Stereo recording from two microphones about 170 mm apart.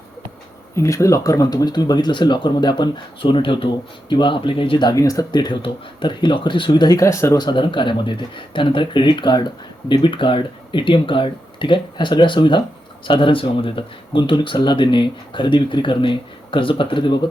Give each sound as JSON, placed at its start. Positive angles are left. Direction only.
{"t": 0.8, "sound": "speech", "side_deg": 20}